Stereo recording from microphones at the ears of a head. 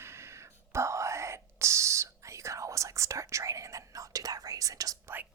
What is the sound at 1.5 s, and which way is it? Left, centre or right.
Whispering, right.